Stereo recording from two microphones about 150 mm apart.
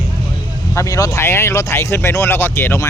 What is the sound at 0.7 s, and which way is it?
Speech, 20° left (ahead or behind).